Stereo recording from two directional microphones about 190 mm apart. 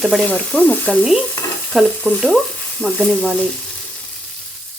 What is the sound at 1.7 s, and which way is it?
Frying, 5° left (ahead or behind).